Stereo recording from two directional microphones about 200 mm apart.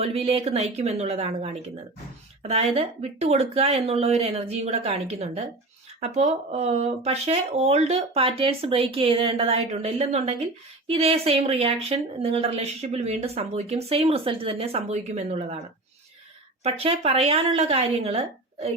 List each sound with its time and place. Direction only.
0.0 s speech: 30° right (ahead or behind)
16.6 s speech: 30° right (ahead or behind)